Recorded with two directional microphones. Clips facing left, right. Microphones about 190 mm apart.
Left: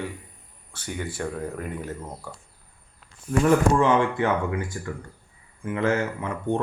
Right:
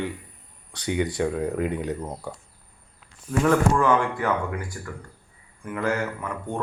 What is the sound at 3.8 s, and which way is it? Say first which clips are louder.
Speech: left 1 dB; 20° left (ahead or behind).